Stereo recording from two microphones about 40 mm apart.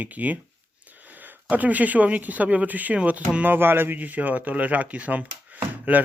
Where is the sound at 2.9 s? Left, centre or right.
Right.